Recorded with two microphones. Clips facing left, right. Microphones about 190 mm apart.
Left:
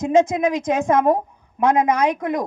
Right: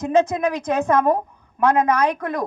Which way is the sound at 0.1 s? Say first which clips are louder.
Left 2 dB; 15° left (ahead or behind).